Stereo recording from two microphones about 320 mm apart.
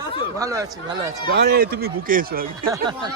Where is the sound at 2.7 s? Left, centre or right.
Centre.